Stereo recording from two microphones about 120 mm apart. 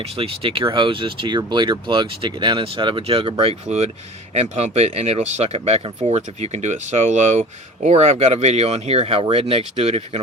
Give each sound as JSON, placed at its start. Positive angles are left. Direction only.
{"t": 0.0, "sound": "speech", "side_deg": -50}
{"t": 3.4, "sound": "speech", "side_deg": -60}